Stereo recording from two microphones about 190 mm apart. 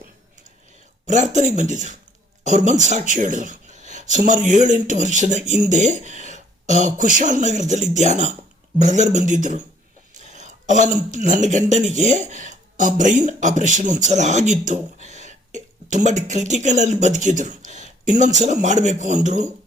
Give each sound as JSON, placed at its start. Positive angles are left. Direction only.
{"t": 1.0, "sound": "speech", "side_deg": -40}
{"t": 3.1, "sound": "a sound", "side_deg": -40}
{"t": 4.3, "sound": "speech", "side_deg": -40}